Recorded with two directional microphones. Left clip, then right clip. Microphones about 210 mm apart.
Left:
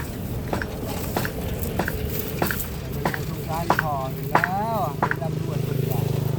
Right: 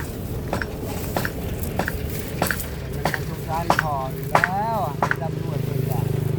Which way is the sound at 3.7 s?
55° right (ahead or behind).